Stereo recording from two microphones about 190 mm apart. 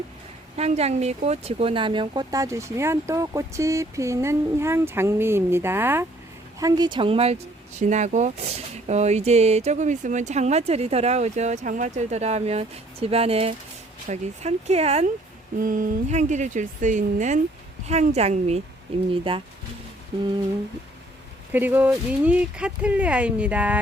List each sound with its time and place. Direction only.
0.5 s speech: 35° right (ahead or behind)
15.5 s speech: 45° right (ahead or behind); by 19.4 s 30° right (ahead or behind)
21.5 s speech: 10° right (ahead or behind)